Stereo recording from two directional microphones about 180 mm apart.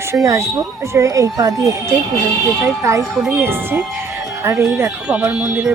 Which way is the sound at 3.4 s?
10° right (ahead or behind).